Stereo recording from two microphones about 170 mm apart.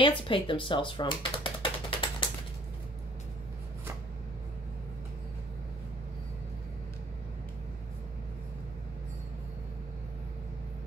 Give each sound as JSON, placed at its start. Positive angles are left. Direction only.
{"t": 0.0, "sound": "typing", "side_deg": 30}